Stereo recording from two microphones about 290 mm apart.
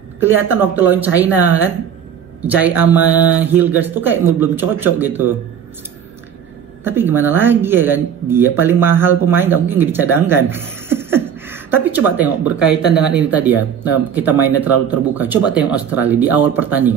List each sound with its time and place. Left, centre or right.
0.2 s speech: centre
6.8 s speech: centre